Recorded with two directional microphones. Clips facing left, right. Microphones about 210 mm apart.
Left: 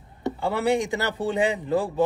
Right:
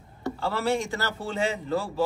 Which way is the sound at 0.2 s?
15° left (ahead or behind).